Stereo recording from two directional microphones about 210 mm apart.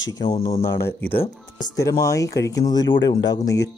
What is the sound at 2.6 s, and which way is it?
Speech, 20° left (ahead or behind).